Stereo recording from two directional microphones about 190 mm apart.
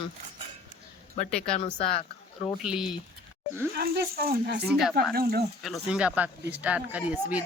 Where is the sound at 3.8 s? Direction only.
50° right (ahead or behind).